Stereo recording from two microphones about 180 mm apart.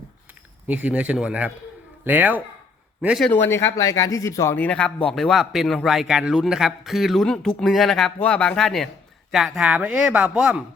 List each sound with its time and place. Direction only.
0.7 s speech: 10° right (ahead or behind)
3.2 s speech: 10° left (ahead or behind); by 10.6 s 5° right (ahead or behind)